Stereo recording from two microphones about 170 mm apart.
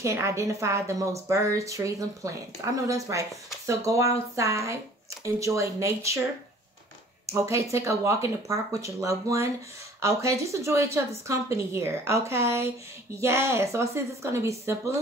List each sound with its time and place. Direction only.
0.0 s a woman's voice: 15° right (ahead or behind)
7.2 s a woman's voice: 15° right (ahead or behind)